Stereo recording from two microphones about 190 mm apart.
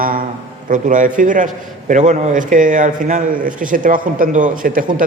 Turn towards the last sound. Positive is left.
turn(degrees=-45)  # may be behind; listen again after turning